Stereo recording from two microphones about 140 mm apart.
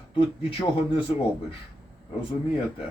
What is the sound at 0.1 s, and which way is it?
Speech, 35° left (ahead or behind).